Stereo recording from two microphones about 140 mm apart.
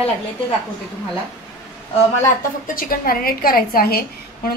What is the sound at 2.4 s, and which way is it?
A woman's voice, 90° left.